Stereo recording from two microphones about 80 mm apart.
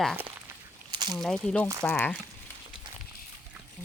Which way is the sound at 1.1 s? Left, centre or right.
Centre.